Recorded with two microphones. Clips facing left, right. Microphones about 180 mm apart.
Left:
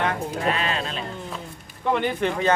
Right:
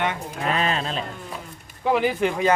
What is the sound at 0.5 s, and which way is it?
Music, 40° right (ahead or behind).